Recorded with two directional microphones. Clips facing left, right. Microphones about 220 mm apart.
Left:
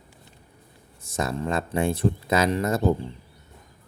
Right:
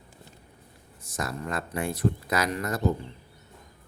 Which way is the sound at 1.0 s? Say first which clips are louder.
Left 6 dB; 25° left (ahead or behind).